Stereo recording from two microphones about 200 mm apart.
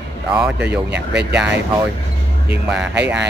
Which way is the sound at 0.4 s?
5° right (ahead or behind).